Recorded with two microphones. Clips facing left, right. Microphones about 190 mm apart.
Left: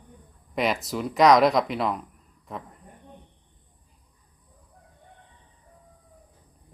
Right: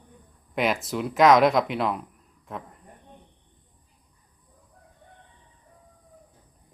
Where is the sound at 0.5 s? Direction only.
Centre (ahead or behind).